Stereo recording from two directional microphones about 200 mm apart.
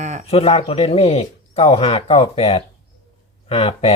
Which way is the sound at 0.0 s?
35° right (ahead or behind).